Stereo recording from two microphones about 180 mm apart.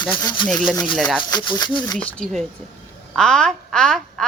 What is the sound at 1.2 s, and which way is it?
Speech, 25° left (ahead or behind).